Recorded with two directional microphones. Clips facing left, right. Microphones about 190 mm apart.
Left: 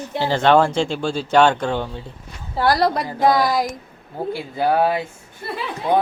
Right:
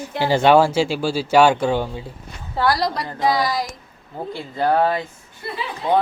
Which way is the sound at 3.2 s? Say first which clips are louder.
Left 3 dB; 50° left (ahead or behind).